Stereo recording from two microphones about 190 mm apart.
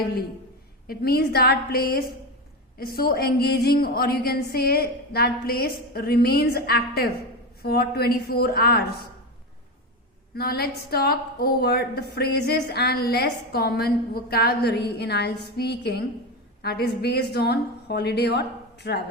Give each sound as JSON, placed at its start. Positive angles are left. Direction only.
{"t": 0.9, "sound": "a woman's voice", "side_deg": 55}
{"t": 10.3, "sound": "a woman's voice", "side_deg": 55}